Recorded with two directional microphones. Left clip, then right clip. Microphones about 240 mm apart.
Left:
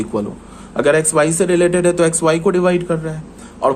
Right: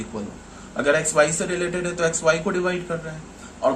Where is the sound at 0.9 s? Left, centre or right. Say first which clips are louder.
Left 5 dB; left.